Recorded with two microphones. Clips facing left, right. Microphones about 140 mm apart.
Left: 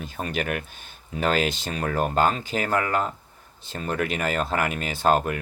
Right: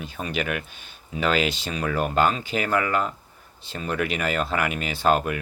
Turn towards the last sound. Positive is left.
turn(degrees=45)  # may be behind; listen again after turning